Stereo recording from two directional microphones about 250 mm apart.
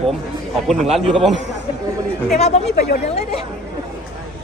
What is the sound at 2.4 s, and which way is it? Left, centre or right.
Speech, left.